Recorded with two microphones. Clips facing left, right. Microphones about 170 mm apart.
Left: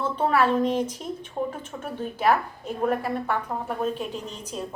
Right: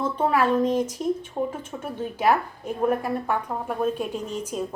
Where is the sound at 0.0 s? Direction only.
10° right (ahead or behind).